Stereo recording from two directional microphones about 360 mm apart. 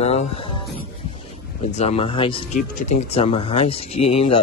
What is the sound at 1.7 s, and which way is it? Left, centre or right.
Speech, centre.